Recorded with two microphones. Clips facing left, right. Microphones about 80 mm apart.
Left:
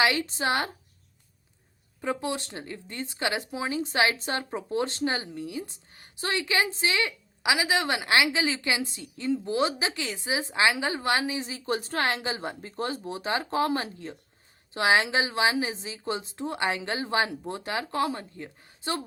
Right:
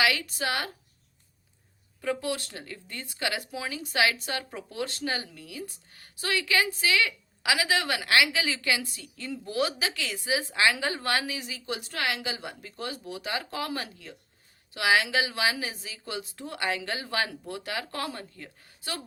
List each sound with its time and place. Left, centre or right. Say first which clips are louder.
0.0 s a woman's voice: left 2 dB; left
2.0 s a woman's voice: even; left